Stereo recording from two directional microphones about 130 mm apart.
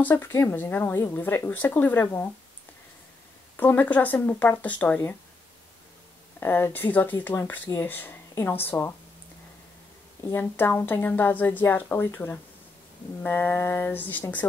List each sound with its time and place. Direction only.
0.0 s speech: 15° left (ahead or behind)
3.5 s speech: 15° left (ahead or behind)
6.4 s speech: 15° left (ahead or behind)
10.3 s speech: 15° left (ahead or behind)